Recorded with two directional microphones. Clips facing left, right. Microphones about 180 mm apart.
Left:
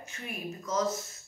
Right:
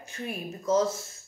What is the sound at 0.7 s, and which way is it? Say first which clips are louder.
Speech: right 7 dB; 30° right (ahead or behind).